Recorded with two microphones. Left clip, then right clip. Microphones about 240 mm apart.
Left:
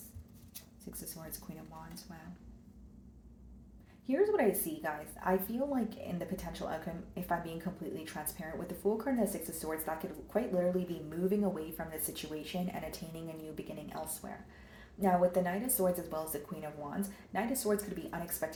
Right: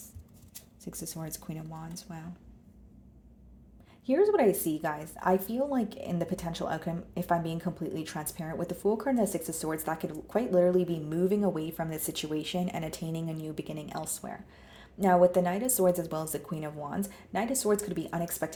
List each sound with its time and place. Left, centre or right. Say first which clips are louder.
0.9 s speech: right 8 dB; right
4.0 s speech: right 6 dB; right